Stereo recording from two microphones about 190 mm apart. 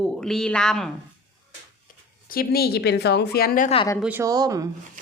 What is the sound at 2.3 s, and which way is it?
A woman's voice, 50° left (ahead or behind).